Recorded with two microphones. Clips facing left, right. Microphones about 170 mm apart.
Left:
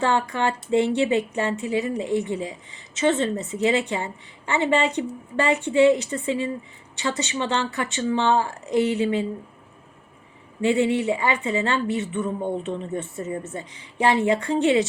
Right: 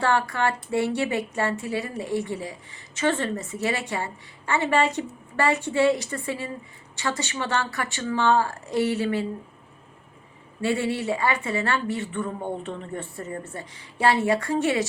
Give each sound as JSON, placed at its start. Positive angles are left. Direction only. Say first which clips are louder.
{"t": 0.0, "sound": "a woman's voice", "louder": "left 1 dB", "side_deg": 20}
{"t": 10.6, "sound": "a woman's voice", "louder": "left 5 dB", "side_deg": 20}